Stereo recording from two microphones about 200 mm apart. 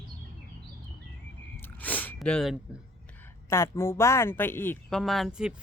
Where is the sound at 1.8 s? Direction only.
10° left (ahead or behind).